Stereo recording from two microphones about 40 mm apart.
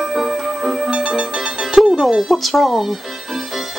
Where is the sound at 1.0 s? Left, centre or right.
Right.